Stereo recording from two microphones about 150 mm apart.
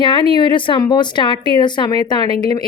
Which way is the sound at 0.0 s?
30° left (ahead or behind).